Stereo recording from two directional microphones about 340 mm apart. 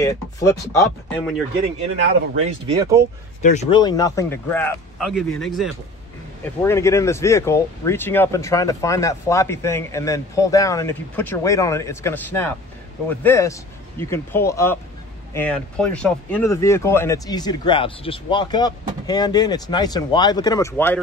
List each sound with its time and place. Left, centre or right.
0.0 s speech: centre
2.3 s speech: centre
3.4 s speech: centre